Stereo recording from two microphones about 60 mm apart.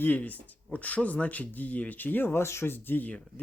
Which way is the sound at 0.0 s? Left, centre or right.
Left.